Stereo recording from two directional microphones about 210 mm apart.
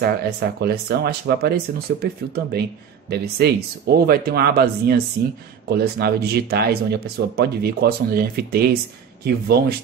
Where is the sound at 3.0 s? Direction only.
50° right (ahead or behind).